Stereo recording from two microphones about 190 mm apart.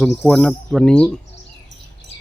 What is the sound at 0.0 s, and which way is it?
Speech, centre (ahead or behind).